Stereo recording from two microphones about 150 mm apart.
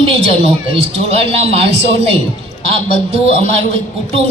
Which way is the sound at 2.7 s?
40° right (ahead or behind).